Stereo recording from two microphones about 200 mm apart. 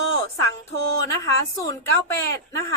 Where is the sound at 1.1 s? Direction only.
15° left (ahead or behind).